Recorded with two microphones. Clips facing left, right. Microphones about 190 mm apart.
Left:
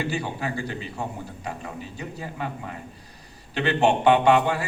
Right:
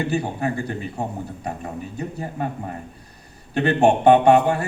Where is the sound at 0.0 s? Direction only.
55° right (ahead or behind).